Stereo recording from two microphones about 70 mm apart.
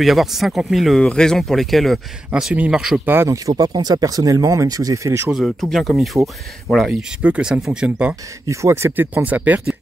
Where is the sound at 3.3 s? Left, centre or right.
Right.